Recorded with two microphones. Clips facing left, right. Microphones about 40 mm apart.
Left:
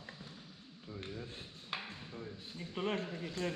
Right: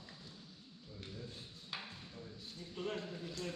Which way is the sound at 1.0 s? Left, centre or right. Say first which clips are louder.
Left 4 dB; left.